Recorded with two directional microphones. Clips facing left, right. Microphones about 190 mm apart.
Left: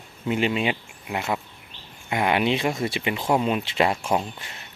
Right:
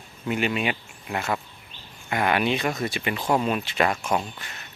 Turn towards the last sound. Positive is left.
turn(degrees=25)  # may be behind; listen again after turning